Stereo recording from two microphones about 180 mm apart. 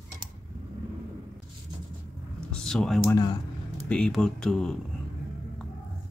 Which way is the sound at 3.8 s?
5° left (ahead or behind).